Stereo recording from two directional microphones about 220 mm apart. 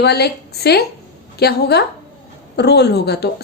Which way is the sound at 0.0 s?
50° left (ahead or behind).